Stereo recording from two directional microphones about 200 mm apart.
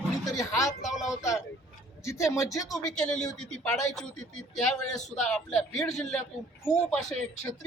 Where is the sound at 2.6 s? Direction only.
Centre (ahead or behind).